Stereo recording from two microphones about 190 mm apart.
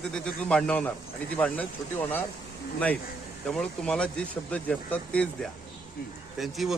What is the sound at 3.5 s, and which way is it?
Speech, 5° left (ahead or behind).